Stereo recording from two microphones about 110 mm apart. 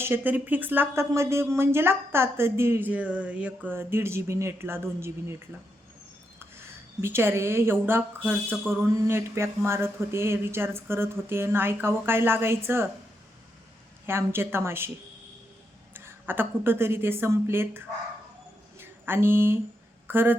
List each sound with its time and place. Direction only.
0.0 s speech: 20° right (ahead or behind)
7.0 s speech: 20° right (ahead or behind)
14.1 s speech: 20° right (ahead or behind)
15.9 s speech: 20° right (ahead or behind)
18.8 s a sound: 20° right (ahead or behind)
20.1 s a woman's voice: 20° right (ahead or behind)